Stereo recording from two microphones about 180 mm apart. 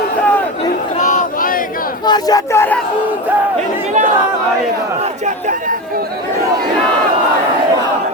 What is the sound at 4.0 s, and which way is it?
Speech, 40° right (ahead or behind).